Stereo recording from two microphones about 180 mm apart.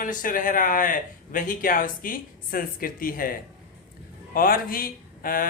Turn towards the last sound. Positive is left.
turn(degrees=50)  # may be behind; listen again after turning